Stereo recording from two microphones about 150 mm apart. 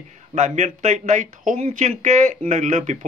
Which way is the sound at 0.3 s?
55° right (ahead or behind).